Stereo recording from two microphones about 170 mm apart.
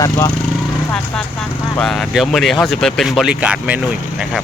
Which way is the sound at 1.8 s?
5° left (ahead or behind).